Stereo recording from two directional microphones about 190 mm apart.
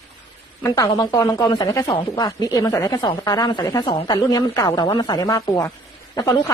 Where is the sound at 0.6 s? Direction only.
20° left (ahead or behind).